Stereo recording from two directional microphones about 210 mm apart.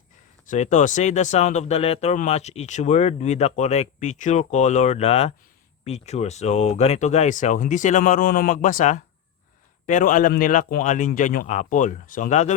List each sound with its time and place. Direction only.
0.4 s speech: 35° left (ahead or behind)